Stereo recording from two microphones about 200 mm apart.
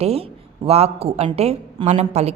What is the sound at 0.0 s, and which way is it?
A woman's voice, 30° right (ahead or behind).